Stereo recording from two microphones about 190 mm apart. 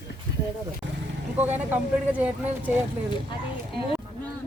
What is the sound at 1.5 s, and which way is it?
Speech, 10° right (ahead or behind).